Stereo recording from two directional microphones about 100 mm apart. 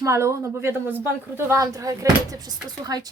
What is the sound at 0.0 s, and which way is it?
Speech, 30° right (ahead or behind).